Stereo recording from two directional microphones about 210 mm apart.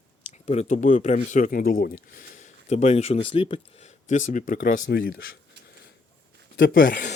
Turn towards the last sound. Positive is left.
turn(degrees=40)  # may be behind; listen again after turning